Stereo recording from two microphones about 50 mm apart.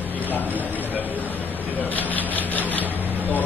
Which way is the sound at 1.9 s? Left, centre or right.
Left.